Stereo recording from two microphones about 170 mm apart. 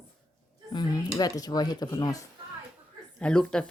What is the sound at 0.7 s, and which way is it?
Speech, 25° left (ahead or behind).